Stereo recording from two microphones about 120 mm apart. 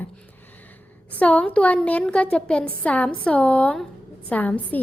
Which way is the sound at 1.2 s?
10° left (ahead or behind).